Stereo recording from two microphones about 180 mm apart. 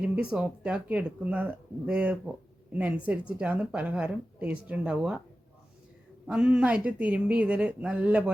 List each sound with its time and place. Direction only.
0.0 s a woman's voice: 5° right (ahead or behind)
6.2 s a woman's voice: 5° right (ahead or behind)